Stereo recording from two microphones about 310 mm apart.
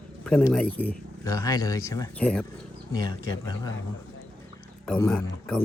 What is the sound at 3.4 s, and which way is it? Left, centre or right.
Speech, centre.